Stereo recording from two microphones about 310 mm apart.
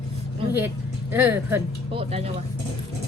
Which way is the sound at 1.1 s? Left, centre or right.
Centre.